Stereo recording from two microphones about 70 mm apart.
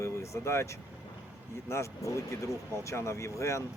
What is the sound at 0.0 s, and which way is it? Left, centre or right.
Vehicle, left.